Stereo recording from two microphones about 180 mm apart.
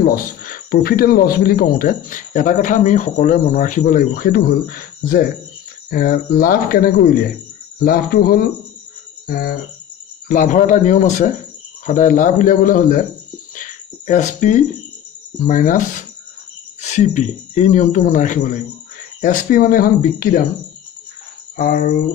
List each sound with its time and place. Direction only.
0.0 s speech: 55° left (ahead or behind)
16.8 s speech: 40° left (ahead or behind)